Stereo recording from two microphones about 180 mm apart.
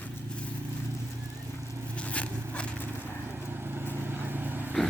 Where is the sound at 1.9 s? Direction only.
5° left (ahead or behind).